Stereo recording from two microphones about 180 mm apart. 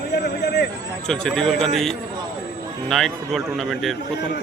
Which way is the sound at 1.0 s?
5° left (ahead or behind).